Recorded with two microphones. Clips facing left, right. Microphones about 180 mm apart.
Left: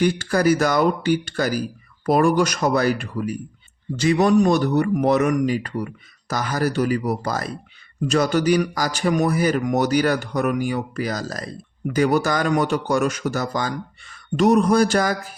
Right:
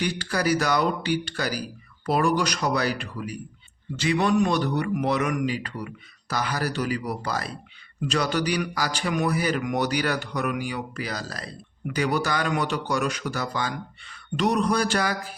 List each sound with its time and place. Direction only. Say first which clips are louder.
0.0 s speech: left 7 dB; 45° left (ahead or behind)